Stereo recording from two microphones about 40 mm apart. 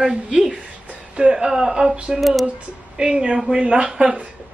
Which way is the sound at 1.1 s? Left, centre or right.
Right.